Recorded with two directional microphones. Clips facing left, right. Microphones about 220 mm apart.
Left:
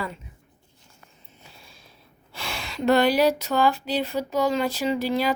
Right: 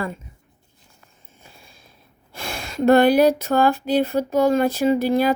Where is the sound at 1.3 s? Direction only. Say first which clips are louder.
Right 2 dB; 50° right (ahead or behind).